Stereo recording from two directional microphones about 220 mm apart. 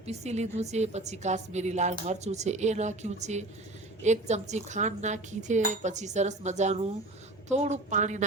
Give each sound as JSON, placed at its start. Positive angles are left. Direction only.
{"t": 0.0, "sound": "a woman's voice", "side_deg": -30}